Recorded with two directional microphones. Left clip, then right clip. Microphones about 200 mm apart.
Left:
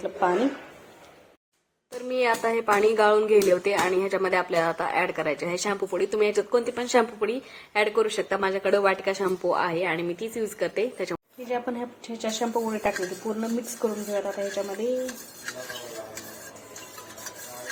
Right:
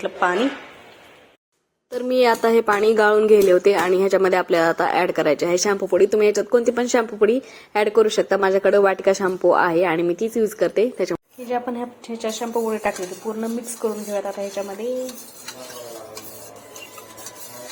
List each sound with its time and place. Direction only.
2.0 s speech: 20° right (ahead or behind); by 14.8 s centre (ahead or behind)